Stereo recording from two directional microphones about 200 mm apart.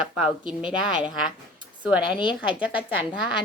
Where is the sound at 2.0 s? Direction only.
25° left (ahead or behind).